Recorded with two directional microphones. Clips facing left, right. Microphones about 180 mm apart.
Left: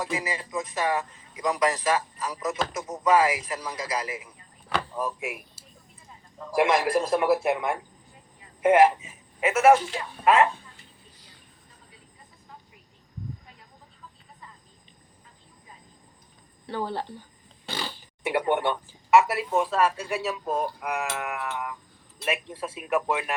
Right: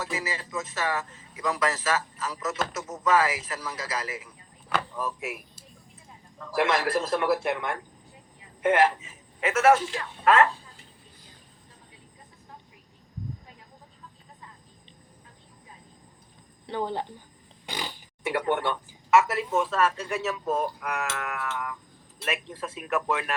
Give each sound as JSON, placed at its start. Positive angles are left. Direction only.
{"t": 0.0, "sound": "a man's voice", "side_deg": 15}
{"t": 6.4, "sound": "a man's voice", "side_deg": 15}
{"t": 16.6, "sound": "a woman's voice", "side_deg": -20}
{"t": 17.7, "sound": "a sound", "side_deg": -15}
{"t": 18.3, "sound": "a man's voice", "side_deg": 15}